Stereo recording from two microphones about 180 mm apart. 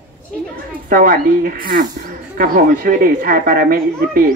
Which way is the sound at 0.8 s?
50° right (ahead or behind).